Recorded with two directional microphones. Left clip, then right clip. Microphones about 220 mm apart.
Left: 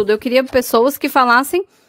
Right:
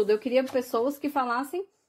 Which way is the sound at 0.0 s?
35° left (ahead or behind).